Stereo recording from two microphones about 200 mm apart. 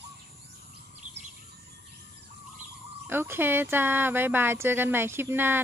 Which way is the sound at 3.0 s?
10° right (ahead or behind).